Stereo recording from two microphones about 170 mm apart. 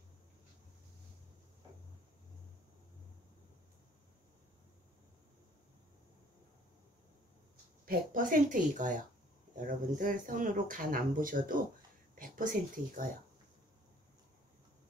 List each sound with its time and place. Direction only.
7.8 s speech: 55° right (ahead or behind)